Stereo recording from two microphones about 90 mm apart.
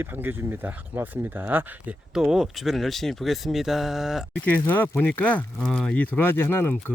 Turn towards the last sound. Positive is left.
turn(degrees=25)  # may be behind; listen again after turning